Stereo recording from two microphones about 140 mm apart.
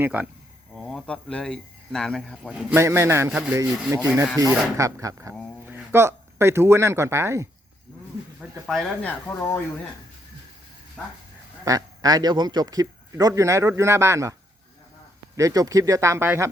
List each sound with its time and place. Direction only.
0.0 s a man's voice: 10° right (ahead or behind)
0.7 s a man's voice: centre (ahead or behind)
2.7 s a man's voice: 20° right (ahead or behind)
8.6 s speech: centre (ahead or behind)
11.0 s speech: centre (ahead or behind)
11.6 s a man's voice: 25° right (ahead or behind)
15.4 s a man's voice: 25° right (ahead or behind)